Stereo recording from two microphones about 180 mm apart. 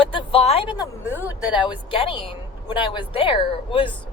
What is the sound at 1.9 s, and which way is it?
A woman's voice, 30° left (ahead or behind).